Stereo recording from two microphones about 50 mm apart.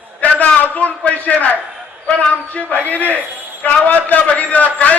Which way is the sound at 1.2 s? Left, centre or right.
Left.